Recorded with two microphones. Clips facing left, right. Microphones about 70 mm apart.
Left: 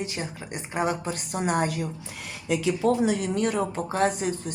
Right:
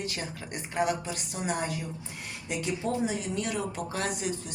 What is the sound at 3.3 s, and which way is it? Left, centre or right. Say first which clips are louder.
Speech: left 6 dB; left.